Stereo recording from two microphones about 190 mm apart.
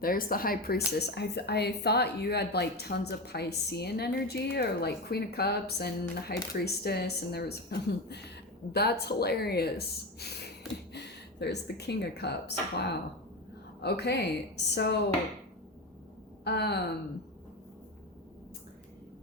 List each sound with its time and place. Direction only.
0.0 s a woman's voice: 50° left (ahead or behind)
16.4 s speech: 60° left (ahead or behind)